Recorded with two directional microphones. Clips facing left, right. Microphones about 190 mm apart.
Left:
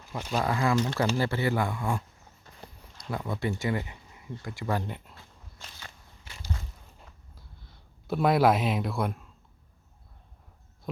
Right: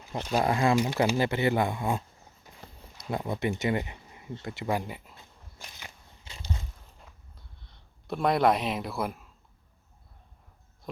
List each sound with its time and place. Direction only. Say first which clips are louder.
0.1 s speech: right 2 dB; 25° right (ahead or behind); by 5.1 s 5° right (ahead or behind)
5.1 s walk: even; 15° right (ahead or behind)
7.0 s a sound: left 1 dB; centre (ahead or behind)